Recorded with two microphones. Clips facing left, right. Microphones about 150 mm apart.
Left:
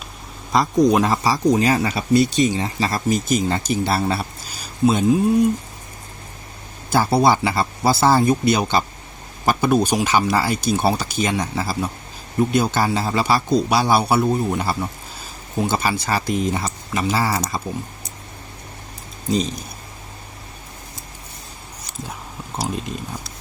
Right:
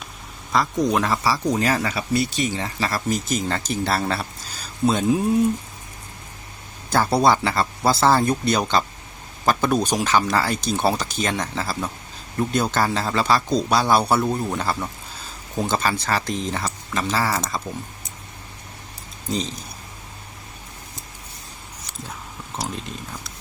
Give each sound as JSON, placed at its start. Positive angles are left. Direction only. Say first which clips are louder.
{"t": 0.5, "sound": "speech", "louder": "left 5 dB", "side_deg": 20}
{"t": 6.9, "sound": "speech", "louder": "left 2 dB", "side_deg": 5}
{"t": 19.3, "sound": "speech", "louder": "left 5 dB", "side_deg": 15}